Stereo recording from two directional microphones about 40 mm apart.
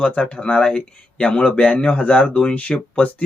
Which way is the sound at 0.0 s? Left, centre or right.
Left.